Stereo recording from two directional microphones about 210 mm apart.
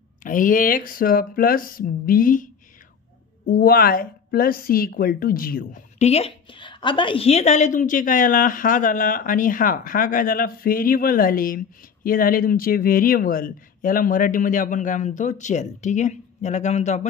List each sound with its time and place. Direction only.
0.2 s a woman's voice: 40° left (ahead or behind)